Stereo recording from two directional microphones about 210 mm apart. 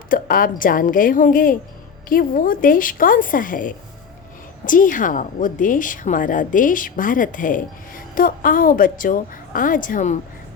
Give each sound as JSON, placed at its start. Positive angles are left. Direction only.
{"t": 0.1, "sound": "a woman's voice", "side_deg": 40}